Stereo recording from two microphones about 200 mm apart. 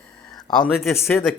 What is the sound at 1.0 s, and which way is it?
Speech, 10° left (ahead or behind).